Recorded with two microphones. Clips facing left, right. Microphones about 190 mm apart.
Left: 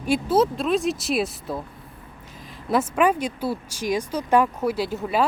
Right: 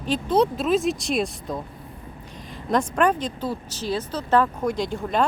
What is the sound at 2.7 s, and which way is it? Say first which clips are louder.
Speech: left 1 dB; 5° left (ahead or behind).